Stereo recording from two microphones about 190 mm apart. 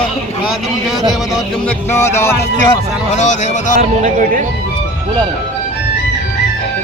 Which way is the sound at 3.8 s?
40° right (ahead or behind).